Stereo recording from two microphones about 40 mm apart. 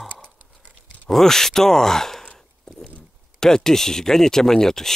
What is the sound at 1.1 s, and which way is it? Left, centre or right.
Speech, centre.